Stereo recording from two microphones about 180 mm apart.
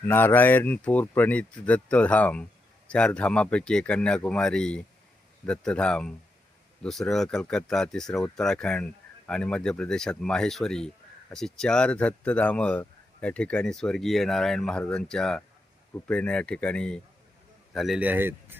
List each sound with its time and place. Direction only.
0.0 s a man's voice: 10° left (ahead or behind); by 18.3 s 10° right (ahead or behind)